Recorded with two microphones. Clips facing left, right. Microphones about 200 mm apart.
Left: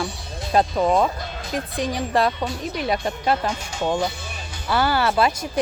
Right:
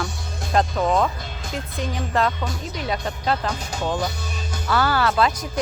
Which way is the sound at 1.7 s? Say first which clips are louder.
Left 2 dB; 15° left (ahead or behind).